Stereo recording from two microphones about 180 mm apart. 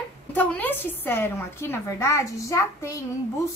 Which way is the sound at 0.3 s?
10° left (ahead or behind).